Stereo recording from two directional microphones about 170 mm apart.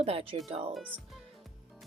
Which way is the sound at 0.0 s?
35° right (ahead or behind).